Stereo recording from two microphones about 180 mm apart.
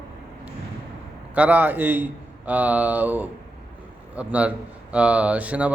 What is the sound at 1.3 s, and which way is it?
Speech, 10° right (ahead or behind).